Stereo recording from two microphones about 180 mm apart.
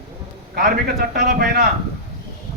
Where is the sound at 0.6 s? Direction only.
55° right (ahead or behind).